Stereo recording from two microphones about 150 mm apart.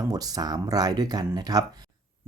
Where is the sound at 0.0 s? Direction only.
25° right (ahead or behind).